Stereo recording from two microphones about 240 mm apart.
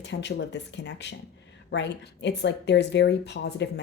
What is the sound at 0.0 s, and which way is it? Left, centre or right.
Speech, left.